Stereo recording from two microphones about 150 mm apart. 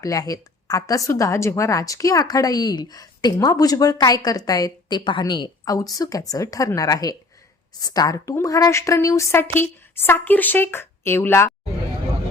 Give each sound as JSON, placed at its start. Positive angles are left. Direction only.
{"t": 0.0, "sound": "a woman's voice", "side_deg": 25}